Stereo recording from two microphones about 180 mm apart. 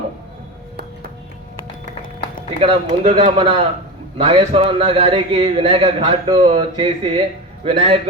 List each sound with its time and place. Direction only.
2.6 s a man's voice: 35° right (ahead or behind)